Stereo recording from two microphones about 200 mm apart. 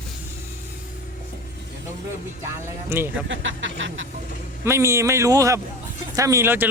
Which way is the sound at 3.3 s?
70° right (ahead or behind).